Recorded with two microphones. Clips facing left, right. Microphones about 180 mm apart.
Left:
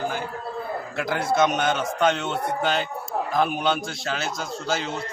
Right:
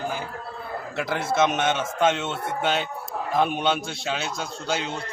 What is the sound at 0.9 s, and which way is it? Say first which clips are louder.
A man's voice: left 1 dB; 5° right (ahead or behind).